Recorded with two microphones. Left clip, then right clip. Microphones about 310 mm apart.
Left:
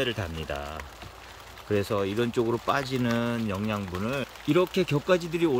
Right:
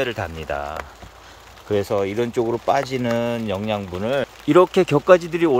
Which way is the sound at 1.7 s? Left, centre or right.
Centre.